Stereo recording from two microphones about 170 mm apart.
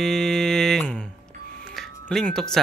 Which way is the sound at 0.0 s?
Centre (ahead or behind).